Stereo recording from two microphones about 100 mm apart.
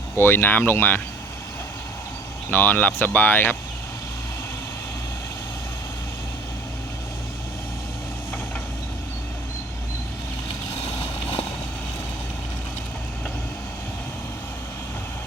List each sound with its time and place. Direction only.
0.2 s speech: 20° left (ahead or behind)
2.5 s speech: 20° left (ahead or behind)
11.0 s vehicle: 90° left